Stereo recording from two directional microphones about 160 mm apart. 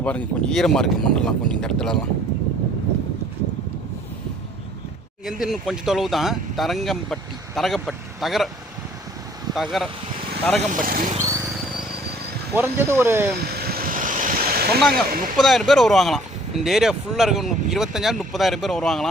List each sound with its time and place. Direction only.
0.0 s speech: 5° left (ahead or behind)
5.2 s speech: centre (ahead or behind)
9.7 s speech: centre (ahead or behind)
10.7 s speech: 60° right (ahead or behind)
11.2 s a sound: 20° right (ahead or behind)
12.5 s speech: 15° right (ahead or behind)
13.3 s waves: 85° right; by 14.8 s 70° right (ahead or behind)
15.0 s speech: 60° right (ahead or behind)
15.4 s speech: centre (ahead or behind)